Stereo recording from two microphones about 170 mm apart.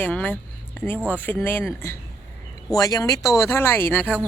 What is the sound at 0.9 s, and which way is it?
Speech, 10° right (ahead or behind).